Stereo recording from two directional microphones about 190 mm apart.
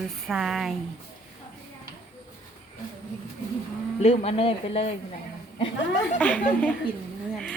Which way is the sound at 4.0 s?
35° left (ahead or behind).